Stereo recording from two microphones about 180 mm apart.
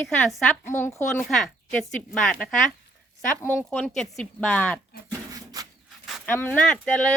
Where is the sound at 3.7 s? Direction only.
5° left (ahead or behind).